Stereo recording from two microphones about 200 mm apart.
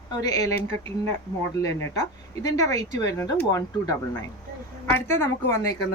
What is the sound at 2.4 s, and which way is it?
Speech, 15° left (ahead or behind).